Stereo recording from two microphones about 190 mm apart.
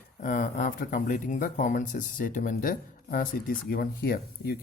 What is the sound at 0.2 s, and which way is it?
Speech, 45° left (ahead or behind).